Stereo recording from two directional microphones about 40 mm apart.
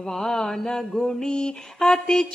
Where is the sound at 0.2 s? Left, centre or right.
Centre.